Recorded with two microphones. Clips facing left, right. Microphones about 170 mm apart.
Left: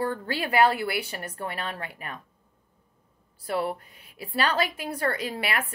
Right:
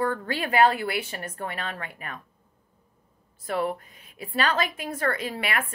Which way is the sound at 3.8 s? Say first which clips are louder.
Right 1 dB; 35° left (ahead or behind).